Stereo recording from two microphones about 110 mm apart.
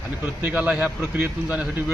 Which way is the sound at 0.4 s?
15° right (ahead or behind).